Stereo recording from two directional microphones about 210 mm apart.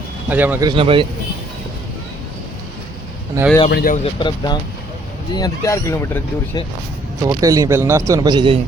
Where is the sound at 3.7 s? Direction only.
45° left (ahead or behind).